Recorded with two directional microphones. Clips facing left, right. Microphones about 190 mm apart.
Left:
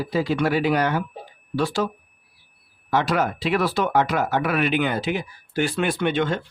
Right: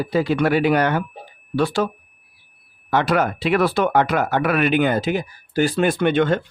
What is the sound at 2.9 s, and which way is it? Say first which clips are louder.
Speech: right 3 dB; 60° right (ahead or behind).